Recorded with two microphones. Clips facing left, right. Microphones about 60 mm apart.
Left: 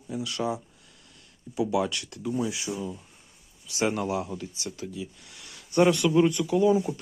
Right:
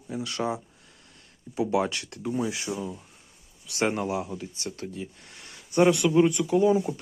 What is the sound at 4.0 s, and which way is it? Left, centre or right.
Speech, centre.